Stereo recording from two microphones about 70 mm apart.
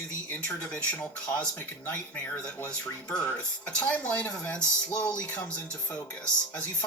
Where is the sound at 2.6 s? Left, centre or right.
Centre.